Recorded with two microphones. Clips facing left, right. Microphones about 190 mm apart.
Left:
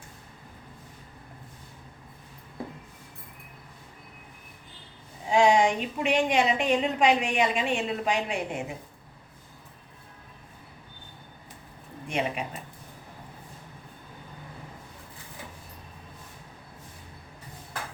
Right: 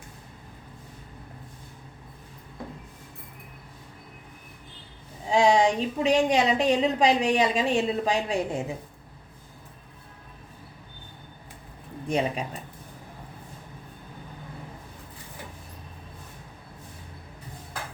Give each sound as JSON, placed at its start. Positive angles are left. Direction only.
{"t": 5.3, "sound": "a woman's voice", "side_deg": -35}
{"t": 12.0, "sound": "a woman's voice", "side_deg": -35}